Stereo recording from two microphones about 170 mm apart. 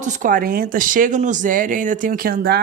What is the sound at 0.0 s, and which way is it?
A woman's voice, 50° right (ahead or behind).